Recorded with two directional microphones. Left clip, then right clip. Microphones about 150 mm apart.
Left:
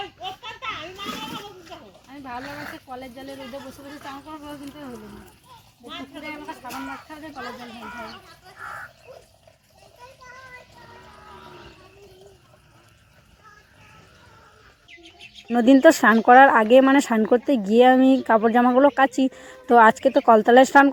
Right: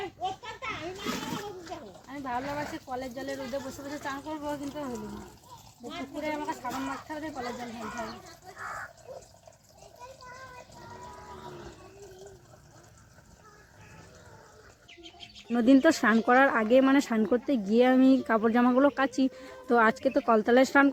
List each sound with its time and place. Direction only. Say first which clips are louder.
2.0 s speech: right 1 dB; 5° right (ahead or behind)
6.2 s a child's voice: right 4 dB; 5° right (ahead or behind)
15.4 s speech: left 8 dB; 30° left (ahead or behind)